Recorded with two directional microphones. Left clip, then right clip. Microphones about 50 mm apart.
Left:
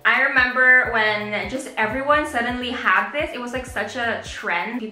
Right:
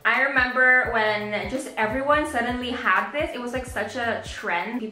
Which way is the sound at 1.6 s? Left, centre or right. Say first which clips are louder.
Left 2 dB; right.